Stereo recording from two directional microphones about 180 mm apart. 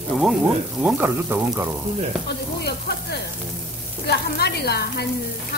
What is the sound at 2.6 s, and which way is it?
Sizzle, 65° left (ahead or behind).